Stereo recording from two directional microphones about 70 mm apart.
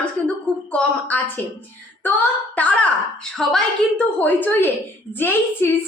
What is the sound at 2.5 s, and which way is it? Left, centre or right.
Speech, centre.